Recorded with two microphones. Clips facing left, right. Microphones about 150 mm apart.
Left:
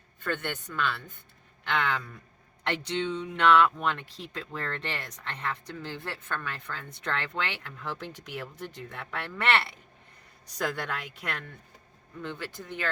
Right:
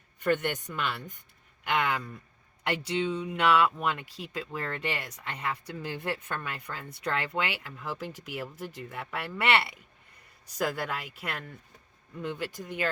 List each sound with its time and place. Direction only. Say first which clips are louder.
0.2 s speech: right 5 dB; 15° right (ahead or behind)